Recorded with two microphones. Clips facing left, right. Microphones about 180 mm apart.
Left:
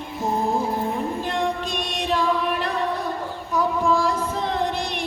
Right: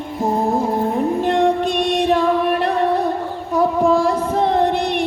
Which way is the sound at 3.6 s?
60° right (ahead or behind).